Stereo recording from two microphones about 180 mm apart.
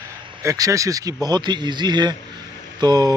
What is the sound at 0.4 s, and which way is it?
Speech, 15° right (ahead or behind).